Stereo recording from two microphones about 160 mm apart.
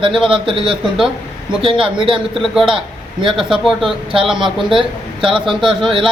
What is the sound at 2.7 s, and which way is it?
Speech, 30° right (ahead or behind).